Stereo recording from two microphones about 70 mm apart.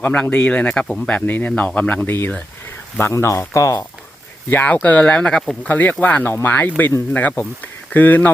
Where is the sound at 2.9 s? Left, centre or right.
Left.